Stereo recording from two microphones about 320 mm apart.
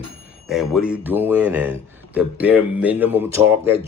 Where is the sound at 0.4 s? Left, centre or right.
Centre.